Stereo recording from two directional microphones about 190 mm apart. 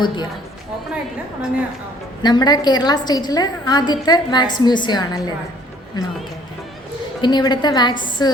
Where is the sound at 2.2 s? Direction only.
20° left (ahead or behind).